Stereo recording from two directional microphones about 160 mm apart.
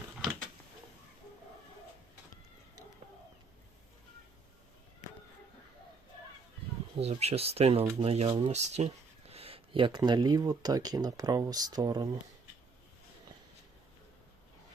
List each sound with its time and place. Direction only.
6.9 s speech: 40° right (ahead or behind); by 12.0 s 25° right (ahead or behind)